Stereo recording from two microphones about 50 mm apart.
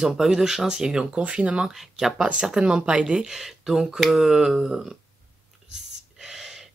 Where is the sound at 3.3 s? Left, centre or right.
Centre.